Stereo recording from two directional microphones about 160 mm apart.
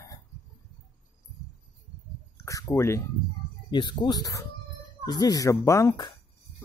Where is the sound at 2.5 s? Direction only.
20° left (ahead or behind).